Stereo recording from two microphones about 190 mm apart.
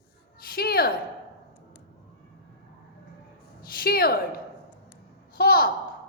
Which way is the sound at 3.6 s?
50° left (ahead or behind).